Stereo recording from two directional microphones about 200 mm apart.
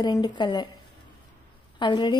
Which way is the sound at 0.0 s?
20° left (ahead or behind).